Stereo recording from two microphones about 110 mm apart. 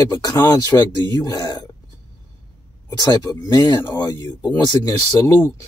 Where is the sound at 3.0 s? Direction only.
35° left (ahead or behind).